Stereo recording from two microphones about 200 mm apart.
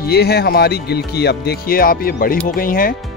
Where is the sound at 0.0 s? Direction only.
55° left (ahead or behind).